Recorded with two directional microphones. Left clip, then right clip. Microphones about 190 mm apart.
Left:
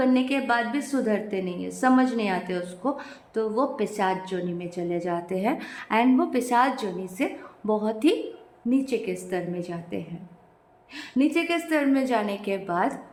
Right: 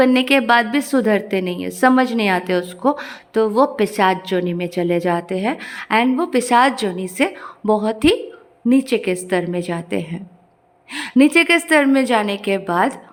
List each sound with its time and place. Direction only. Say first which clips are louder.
0.0 s a woman's voice: right 9 dB; 40° right (ahead or behind)
5.3 s a woman's voice: right 5 dB; 20° right (ahead or behind)